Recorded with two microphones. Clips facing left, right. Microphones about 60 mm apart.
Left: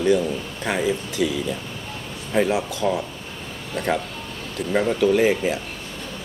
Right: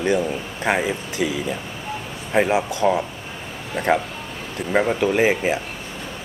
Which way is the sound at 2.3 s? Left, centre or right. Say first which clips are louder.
Right 2 dB; right.